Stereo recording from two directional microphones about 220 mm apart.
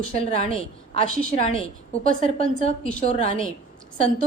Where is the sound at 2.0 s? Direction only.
35° right (ahead or behind).